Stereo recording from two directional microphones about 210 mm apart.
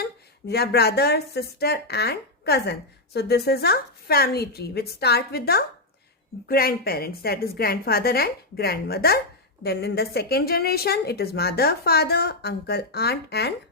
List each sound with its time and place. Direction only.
0.0 s speech: 50° left (ahead or behind)